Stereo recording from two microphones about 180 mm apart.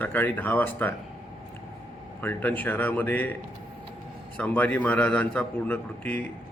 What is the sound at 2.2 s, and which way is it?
A man's voice, 10° left (ahead or behind).